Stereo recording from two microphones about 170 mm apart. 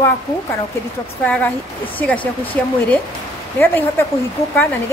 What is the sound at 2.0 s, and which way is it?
A woman's voice, 10° left (ahead or behind).